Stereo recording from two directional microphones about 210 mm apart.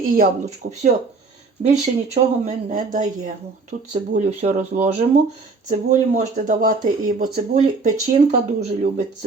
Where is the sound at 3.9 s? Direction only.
35° right (ahead or behind).